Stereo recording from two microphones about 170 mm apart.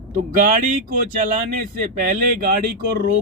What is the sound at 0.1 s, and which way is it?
Speech, 50° right (ahead or behind).